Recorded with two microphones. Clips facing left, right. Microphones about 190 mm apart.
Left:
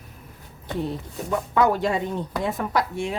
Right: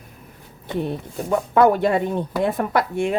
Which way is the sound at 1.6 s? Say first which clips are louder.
Right 5 dB; 55° right (ahead or behind).